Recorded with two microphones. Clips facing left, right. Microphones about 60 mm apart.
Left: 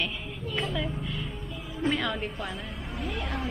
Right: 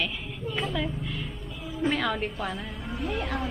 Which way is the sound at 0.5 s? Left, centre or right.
Centre.